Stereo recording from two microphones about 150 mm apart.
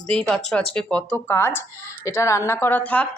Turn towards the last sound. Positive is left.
turn(degrees=10)  # may be behind; listen again after turning